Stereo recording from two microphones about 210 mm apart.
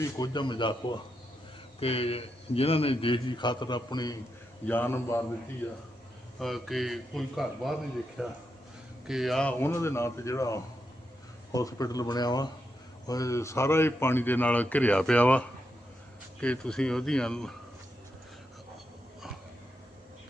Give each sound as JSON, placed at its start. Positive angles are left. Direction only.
{"t": 0.0, "sound": "a man's voice", "side_deg": 20}
{"t": 4.6, "sound": "a man's voice", "side_deg": 10}
{"t": 6.4, "sound": "a man's voice", "side_deg": 0}